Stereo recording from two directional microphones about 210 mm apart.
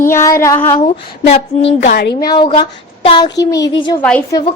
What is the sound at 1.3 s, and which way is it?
Speech, 30° left (ahead or behind).